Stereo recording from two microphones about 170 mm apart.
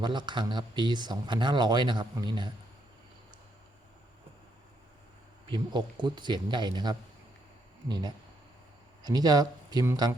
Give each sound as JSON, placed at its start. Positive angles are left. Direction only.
{"t": 0.0, "sound": "speech", "side_deg": -25}
{"t": 5.5, "sound": "speech", "side_deg": -25}